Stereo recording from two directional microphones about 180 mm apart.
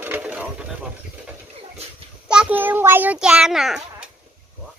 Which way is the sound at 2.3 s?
10° right (ahead or behind).